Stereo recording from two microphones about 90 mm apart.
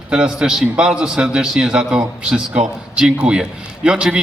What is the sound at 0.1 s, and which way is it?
A man's voice, 10° right (ahead or behind).